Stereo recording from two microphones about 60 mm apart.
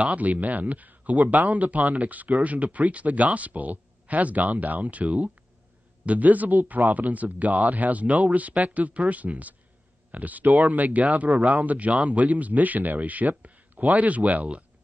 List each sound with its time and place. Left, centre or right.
0.0 s speech: right